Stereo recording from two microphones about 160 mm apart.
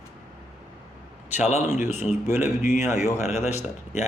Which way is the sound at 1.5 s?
45° left (ahead or behind).